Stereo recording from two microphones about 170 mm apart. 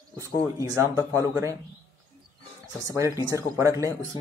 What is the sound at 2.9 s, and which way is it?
Speech, 20° right (ahead or behind).